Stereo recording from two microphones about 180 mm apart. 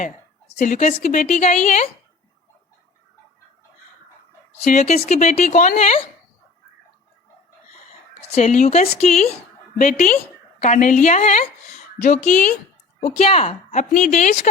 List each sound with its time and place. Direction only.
0.0 s a woman's voice: 40° left (ahead or behind)
4.5 s a woman's voice: 40° left (ahead or behind)
5.7 s a woman's voice: 35° left (ahead or behind)
8.2 s a woman's voice: 35° left (ahead or behind)
9.7 s a woman's voice: 45° left (ahead or behind)